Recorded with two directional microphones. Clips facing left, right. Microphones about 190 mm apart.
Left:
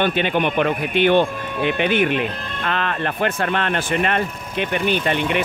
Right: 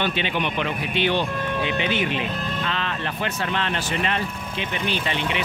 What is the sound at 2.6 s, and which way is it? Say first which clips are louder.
Music: left 8 dB; 55° left (ahead or behind).